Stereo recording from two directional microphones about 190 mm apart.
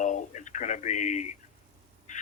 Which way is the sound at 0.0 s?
40° left (ahead or behind).